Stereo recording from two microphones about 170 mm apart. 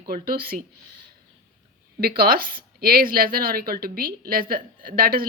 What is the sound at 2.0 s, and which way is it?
Speech, 65° right (ahead or behind).